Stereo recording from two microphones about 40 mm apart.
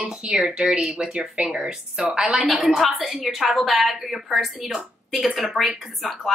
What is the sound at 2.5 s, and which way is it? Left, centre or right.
A woman's voice, centre.